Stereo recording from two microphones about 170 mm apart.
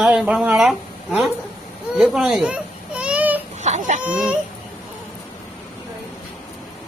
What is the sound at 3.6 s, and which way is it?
Baby cry, 45° right (ahead or behind).